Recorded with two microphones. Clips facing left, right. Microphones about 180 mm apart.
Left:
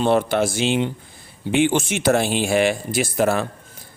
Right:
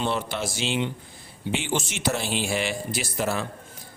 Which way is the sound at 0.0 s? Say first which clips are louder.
Left 9 dB; 55° left (ahead or behind).